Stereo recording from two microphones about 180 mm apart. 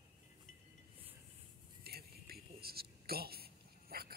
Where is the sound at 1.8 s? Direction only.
60° right (ahead or behind).